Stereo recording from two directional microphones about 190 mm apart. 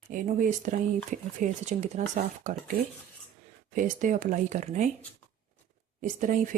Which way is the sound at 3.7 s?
45° right (ahead or behind).